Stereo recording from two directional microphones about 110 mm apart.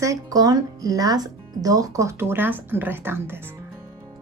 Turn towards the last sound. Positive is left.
turn(degrees=-20)  # may be behind; listen again after turning